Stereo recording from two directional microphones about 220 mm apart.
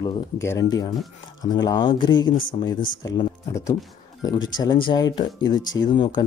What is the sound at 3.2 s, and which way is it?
Speech, 15° left (ahead or behind).